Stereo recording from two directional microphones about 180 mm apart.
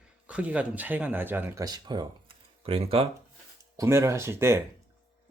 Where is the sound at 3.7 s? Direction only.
15° right (ahead or behind).